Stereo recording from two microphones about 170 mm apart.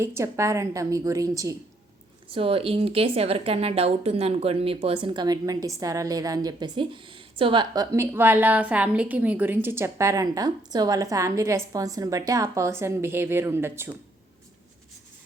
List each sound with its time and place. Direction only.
0.0 s a woman's voice: 15° right (ahead or behind)
2.3 s speech: 35° right (ahead or behind)
7.9 s a woman's voice: 15° right (ahead or behind)